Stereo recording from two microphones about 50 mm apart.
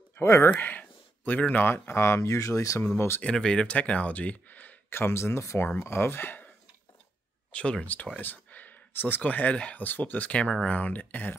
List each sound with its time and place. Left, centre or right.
0.1 s speech: left
0.6 s a sound: left
1.5 s speech: left
3.2 s speech: centre
3.6 s speech: left
4.8 s speech: left
5.8 s speech: left
7.5 s speech: centre
7.8 s speech: left
8.2 s a sound: left
9.2 s speech: left